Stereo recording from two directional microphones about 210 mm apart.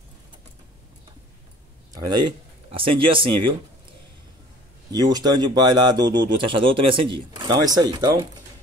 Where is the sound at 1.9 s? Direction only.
20° right (ahead or behind).